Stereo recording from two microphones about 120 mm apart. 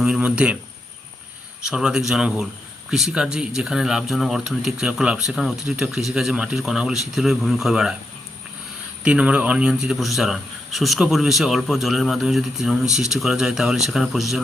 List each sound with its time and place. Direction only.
0.0 s speech: 10° right (ahead or behind)
1.7 s a man's voice: 5° right (ahead or behind)
9.0 s a man's voice: 10° right (ahead or behind)